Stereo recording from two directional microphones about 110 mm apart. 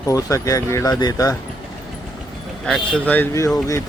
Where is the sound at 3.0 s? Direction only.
15° left (ahead or behind).